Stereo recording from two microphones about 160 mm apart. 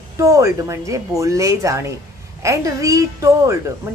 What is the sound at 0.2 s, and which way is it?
A woman's voice, 20° right (ahead or behind).